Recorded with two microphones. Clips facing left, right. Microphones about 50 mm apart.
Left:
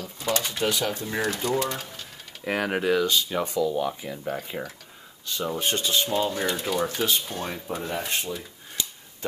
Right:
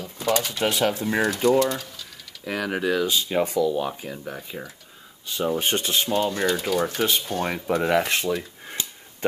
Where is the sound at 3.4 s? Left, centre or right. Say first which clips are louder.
Right 3 dB; right.